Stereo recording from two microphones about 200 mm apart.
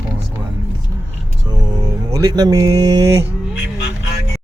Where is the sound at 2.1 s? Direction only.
20° right (ahead or behind).